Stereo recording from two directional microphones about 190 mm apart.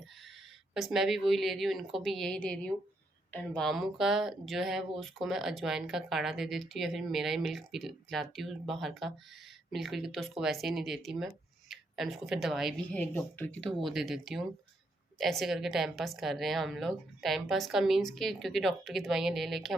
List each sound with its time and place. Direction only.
0.7 s speech: centre (ahead or behind)